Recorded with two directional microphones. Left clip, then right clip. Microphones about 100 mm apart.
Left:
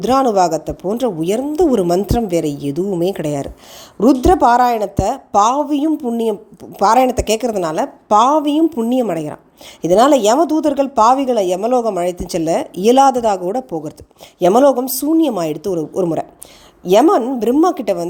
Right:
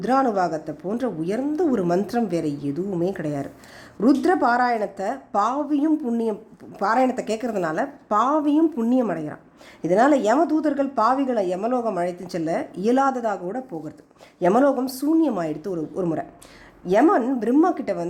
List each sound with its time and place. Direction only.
0.0 s a woman's voice: 35° left (ahead or behind)